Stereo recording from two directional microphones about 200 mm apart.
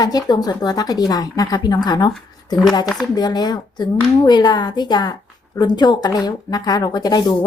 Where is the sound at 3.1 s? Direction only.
20° left (ahead or behind).